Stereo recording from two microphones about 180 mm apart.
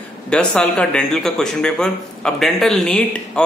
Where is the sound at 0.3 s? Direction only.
5° left (ahead or behind).